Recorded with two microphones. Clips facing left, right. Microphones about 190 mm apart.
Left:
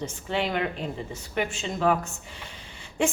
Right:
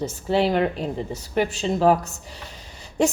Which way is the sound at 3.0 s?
40° right (ahead or behind).